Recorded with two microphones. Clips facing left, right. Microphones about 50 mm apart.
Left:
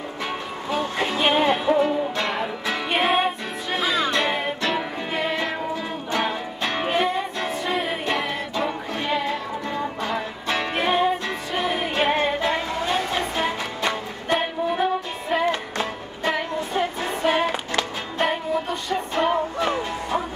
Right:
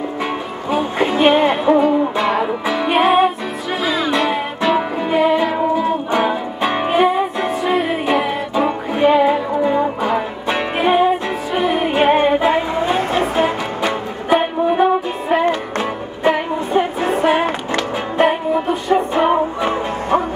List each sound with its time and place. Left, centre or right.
0.7 s music: centre
8.6 s music: centre
13.4 s music: centre
18.2 s music: centre